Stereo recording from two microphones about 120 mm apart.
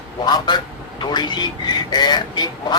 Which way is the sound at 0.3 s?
35° left (ahead or behind).